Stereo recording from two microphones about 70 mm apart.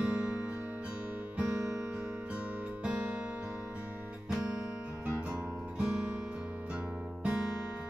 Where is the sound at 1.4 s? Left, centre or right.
Right.